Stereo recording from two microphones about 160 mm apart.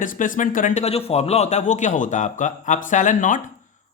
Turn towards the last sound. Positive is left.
turn(degrees=50)  # may be behind; listen again after turning